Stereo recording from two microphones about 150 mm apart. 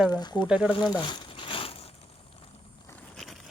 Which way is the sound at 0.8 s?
30° left (ahead or behind).